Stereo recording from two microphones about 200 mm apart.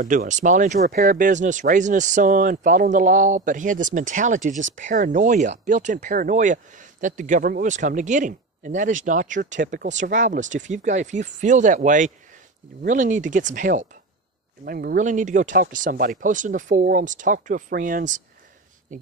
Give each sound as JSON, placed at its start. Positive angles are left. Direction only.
{"t": 0.0, "sound": "speech", "side_deg": -40}